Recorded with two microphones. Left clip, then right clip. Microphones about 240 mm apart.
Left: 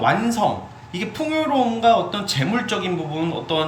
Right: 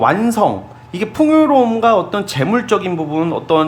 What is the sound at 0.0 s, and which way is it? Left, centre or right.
Speech, centre.